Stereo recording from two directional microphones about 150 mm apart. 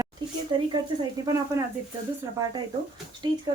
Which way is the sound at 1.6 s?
15° right (ahead or behind).